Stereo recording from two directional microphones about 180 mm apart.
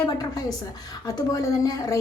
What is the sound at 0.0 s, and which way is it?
A woman's voice, 20° left (ahead or behind).